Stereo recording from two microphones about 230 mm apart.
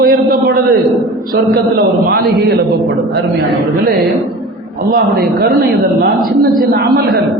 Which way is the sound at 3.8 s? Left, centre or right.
Right.